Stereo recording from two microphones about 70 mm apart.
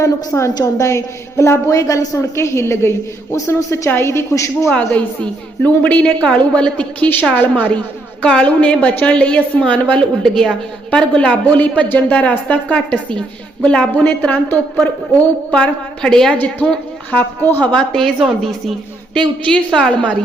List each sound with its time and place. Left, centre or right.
0.0 s a woman's voice: left
4.7 s a woman's voice: centre
13.9 s a man's voice: left
15.5 s a woman's voice: centre
16.4 s a man's voice: left
17.9 s a woman's voice: centre